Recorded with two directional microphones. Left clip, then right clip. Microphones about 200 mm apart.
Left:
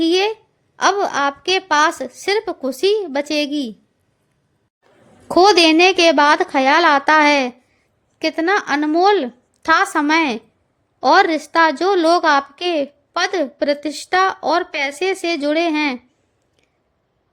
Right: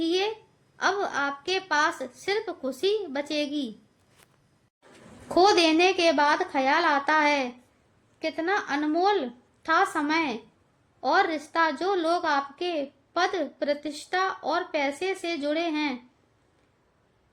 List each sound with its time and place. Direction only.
0.0 s a sound: 40° left (ahead or behind)
0.8 s a woman's voice: 40° left (ahead or behind)
5.3 s a woman's voice: 40° left (ahead or behind)